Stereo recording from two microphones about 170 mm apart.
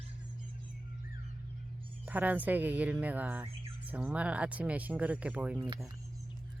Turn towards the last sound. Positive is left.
turn(degrees=-25)  # may be behind; listen again after turning